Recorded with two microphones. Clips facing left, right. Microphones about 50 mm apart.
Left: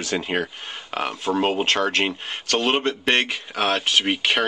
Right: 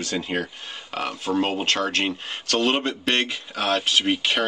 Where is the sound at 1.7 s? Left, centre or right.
Left.